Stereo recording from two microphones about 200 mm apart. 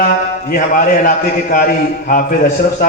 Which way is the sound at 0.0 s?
40° left (ahead or behind).